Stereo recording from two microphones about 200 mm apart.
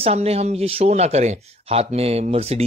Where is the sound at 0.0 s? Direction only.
30° right (ahead or behind).